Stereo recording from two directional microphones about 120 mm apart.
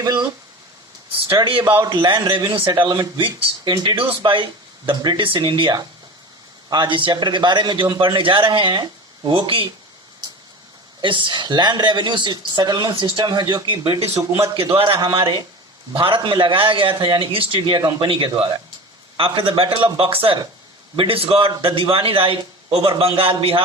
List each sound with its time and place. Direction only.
0.0 s speech: 35° right (ahead or behind)
1.6 s a man's voice: 20° right (ahead or behind)
1.9 s a man's voice: 40° right (ahead or behind)
11.0 s a man's voice: 45° right (ahead or behind)
14.2 s a man's voice: 25° right (ahead or behind)
14.5 s a man's voice: 50° right (ahead or behind)
17.7 s a man's voice: 35° right (ahead or behind)
19.1 s a man's voice: 45° right (ahead or behind)